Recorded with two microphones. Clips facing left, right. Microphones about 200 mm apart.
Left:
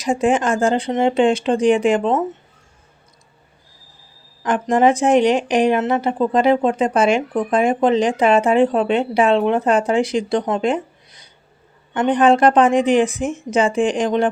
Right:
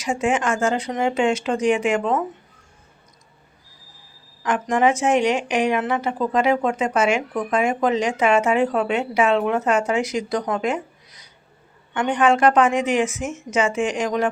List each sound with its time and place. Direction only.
0.0 s a woman's voice: 35° left (ahead or behind)
4.4 s a woman's voice: 35° left (ahead or behind)